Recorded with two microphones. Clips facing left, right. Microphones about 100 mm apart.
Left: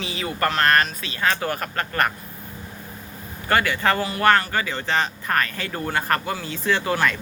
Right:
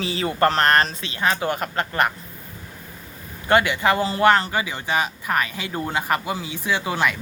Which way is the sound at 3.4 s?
20° right (ahead or behind).